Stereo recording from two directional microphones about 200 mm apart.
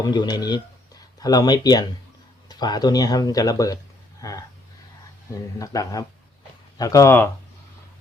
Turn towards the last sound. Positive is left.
turn(degrees=15)  # may be behind; listen again after turning